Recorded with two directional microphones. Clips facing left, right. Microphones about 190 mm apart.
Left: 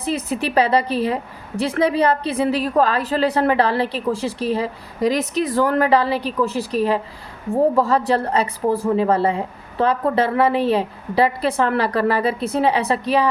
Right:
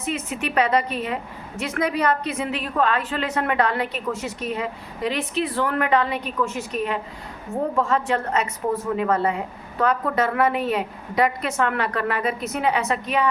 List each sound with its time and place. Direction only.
0.0 s a woman's voice: 35° left (ahead or behind)